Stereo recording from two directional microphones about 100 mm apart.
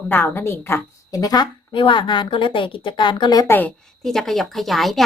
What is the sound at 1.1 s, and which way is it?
Speech, 40° left (ahead or behind).